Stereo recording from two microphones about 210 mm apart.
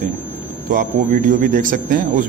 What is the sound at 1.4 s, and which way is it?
Speech, 40° right (ahead or behind).